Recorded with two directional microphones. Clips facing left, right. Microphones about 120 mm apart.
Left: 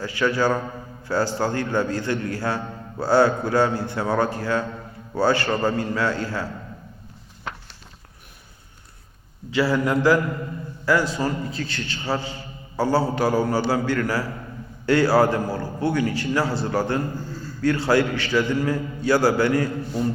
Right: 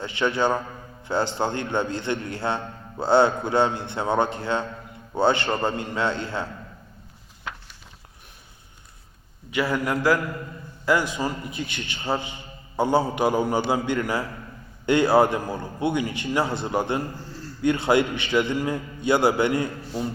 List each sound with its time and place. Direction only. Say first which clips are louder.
0.0 s a man's voice: left 2 dB; 20° right (ahead or behind)
9.5 s a man's voice: left 3 dB; 20° right (ahead or behind)